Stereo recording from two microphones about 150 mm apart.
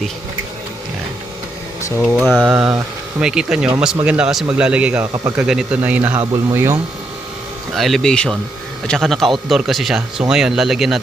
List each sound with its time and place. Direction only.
2.0 s speech: centre (ahead or behind); by 6.7 s 20° right (ahead or behind)
7.8 s speech: centre (ahead or behind)